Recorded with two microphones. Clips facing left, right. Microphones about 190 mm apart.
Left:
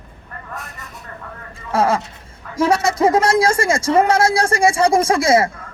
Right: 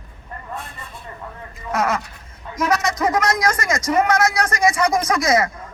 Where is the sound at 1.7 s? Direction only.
30° left (ahead or behind).